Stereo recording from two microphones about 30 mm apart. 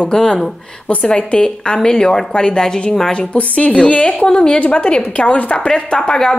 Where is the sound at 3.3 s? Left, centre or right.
Left.